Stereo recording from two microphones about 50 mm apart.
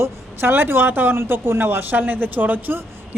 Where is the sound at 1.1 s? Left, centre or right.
Right.